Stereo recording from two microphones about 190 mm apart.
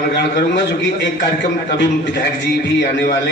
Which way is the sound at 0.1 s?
60° left (ahead or behind).